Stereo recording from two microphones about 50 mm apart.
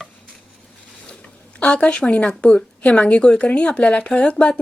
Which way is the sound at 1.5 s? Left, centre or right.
Left.